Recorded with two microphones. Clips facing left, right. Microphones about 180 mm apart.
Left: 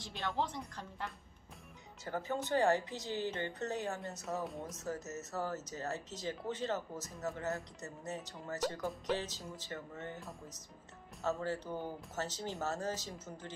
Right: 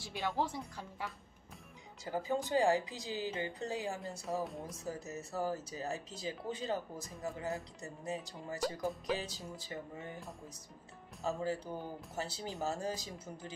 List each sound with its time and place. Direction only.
0.0 s speech: 15° right (ahead or behind)
11.3 s speech: 10° right (ahead or behind)